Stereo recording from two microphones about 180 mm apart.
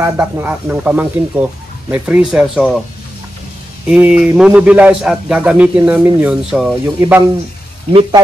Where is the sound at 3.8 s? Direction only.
5° right (ahead or behind).